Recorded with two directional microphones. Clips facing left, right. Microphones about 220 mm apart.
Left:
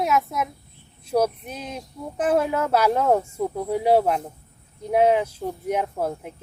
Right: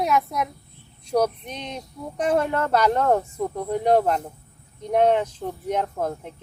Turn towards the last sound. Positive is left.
turn(degrees=10)  # may be behind; listen again after turning